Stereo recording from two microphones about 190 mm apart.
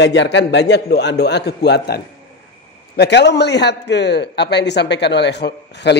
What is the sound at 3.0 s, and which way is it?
A man's voice, 65° left (ahead or behind).